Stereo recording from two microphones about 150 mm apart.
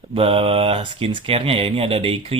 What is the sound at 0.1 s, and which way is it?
Speech, 40° right (ahead or behind).